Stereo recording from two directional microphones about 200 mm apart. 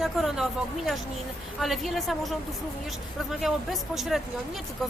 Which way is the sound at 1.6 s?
Centre (ahead or behind).